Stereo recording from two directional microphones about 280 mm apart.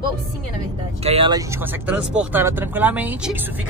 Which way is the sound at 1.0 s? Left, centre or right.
Right.